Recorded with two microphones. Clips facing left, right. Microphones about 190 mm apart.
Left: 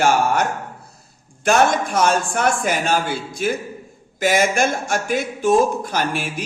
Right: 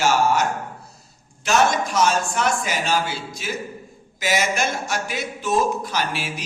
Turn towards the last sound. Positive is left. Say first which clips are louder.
# left 3 dB
turn(degrees=50)  # may be behind; listen again after turning